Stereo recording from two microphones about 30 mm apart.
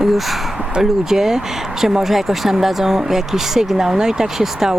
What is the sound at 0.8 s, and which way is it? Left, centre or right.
Speech, centre.